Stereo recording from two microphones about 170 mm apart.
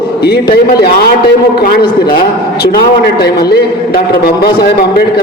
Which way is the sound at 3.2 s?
70° left (ahead or behind).